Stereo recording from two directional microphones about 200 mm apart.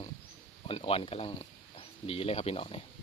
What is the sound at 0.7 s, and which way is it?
Speech, 30° left (ahead or behind).